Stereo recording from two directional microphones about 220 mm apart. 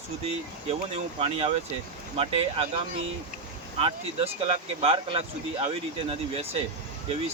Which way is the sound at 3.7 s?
25° right (ahead or behind).